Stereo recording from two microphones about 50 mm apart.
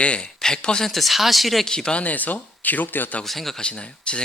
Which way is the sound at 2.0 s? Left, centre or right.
Left.